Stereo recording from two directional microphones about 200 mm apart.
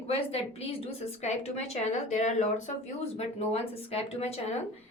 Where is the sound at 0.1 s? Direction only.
30° left (ahead or behind).